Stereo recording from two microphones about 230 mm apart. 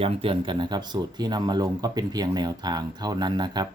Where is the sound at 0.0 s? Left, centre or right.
Right.